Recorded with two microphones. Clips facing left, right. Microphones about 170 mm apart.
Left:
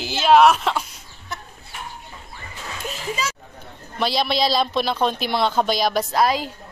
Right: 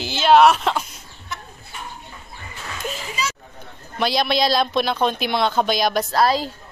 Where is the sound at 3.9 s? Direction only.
Centre (ahead or behind).